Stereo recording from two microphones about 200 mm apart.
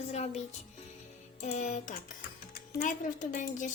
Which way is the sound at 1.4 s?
35° left (ahead or behind).